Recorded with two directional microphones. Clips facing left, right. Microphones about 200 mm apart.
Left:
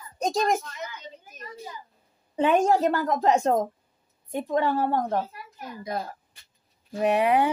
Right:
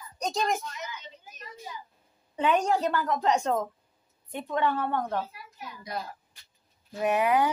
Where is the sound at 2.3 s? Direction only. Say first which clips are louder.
Left 4 dB; 45° left (ahead or behind).